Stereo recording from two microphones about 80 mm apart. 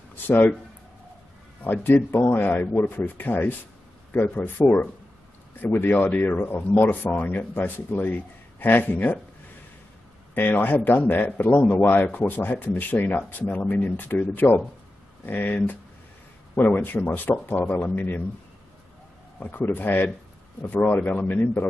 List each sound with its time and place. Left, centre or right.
0.1 s a sound: left
1.6 s a man's voice: left
10.3 s a man's voice: left
19.4 s a man's voice: left